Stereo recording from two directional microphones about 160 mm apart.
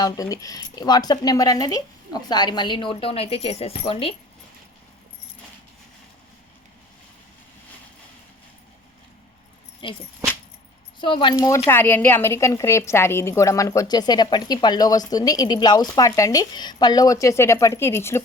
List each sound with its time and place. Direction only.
0.0 s a woman's voice: 20° left (ahead or behind)
9.8 s speech: 30° left (ahead or behind)
11.0 s a woman's voice: 30° left (ahead or behind)